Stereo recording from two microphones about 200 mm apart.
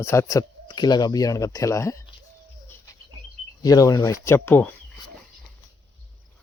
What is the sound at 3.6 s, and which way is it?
Speech, 20° left (ahead or behind).